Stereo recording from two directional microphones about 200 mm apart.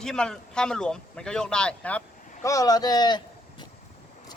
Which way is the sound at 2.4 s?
15° left (ahead or behind).